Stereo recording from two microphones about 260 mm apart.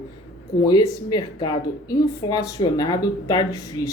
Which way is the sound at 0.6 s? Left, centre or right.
Centre.